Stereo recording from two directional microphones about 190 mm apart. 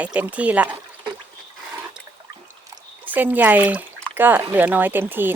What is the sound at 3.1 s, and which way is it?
Speech, 10° right (ahead or behind).